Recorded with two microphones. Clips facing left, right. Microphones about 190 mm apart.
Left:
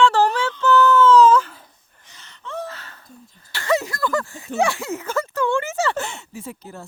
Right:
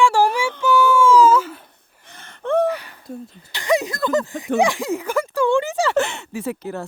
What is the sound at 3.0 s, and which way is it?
Speech, 70° right (ahead or behind).